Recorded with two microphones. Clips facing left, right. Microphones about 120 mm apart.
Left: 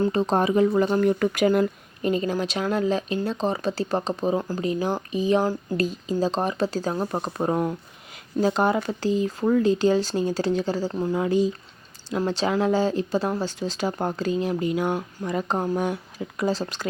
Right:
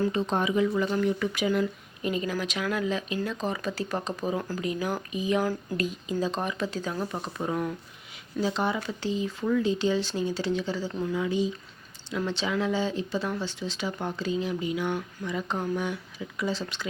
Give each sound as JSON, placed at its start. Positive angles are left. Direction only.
{"t": 0.1, "sound": "speech", "side_deg": 40}
{"t": 8.4, "sound": "speech", "side_deg": 45}